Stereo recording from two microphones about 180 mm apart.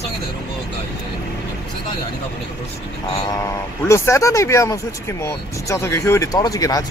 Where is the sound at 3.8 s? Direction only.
15° left (ahead or behind).